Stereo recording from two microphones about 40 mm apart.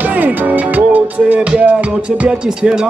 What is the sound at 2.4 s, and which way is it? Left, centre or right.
Music, centre.